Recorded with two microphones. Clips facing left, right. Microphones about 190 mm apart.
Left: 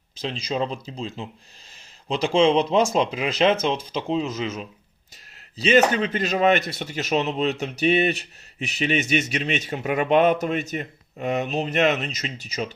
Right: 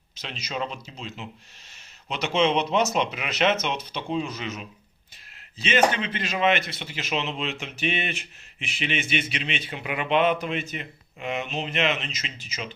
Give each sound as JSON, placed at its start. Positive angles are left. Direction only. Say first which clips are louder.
{"t": 0.2, "sound": "speech", "louder": "left 6 dB", "side_deg": 30}